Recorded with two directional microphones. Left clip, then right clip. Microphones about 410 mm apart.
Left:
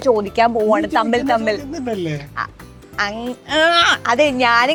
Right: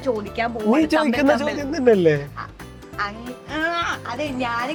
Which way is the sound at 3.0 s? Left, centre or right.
Left.